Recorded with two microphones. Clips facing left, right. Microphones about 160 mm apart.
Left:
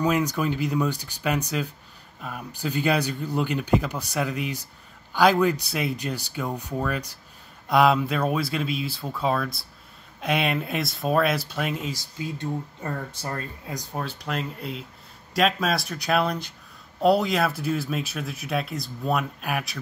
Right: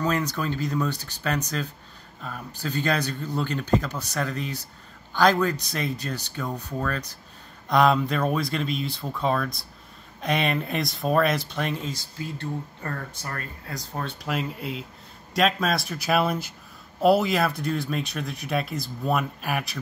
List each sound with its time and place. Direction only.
0.0 s speech: 10° left (ahead or behind)
12.0 s speech: 15° left (ahead or behind)
14.0 s speech: centre (ahead or behind)